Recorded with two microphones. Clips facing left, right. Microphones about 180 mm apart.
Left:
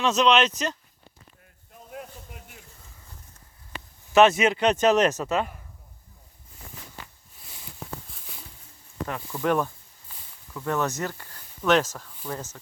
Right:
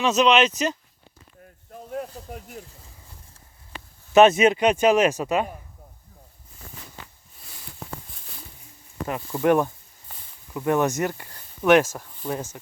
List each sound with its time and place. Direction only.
0.0 s speech: 5° right (ahead or behind)
1.9 s a sound: 40° right (ahead or behind)
4.1 s speech: 20° right (ahead or behind)
9.0 s speech: 15° right (ahead or behind)